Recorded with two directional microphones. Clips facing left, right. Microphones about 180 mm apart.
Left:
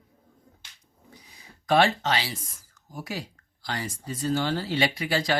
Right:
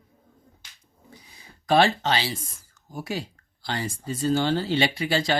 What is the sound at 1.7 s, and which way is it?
Speech, 30° right (ahead or behind).